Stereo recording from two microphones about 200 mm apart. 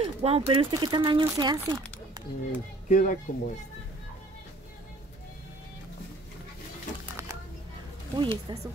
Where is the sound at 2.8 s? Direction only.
40° left (ahead or behind).